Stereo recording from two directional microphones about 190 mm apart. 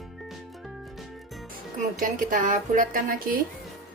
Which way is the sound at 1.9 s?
45° right (ahead or behind).